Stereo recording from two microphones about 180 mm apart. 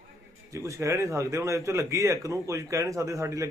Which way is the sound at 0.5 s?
15° right (ahead or behind).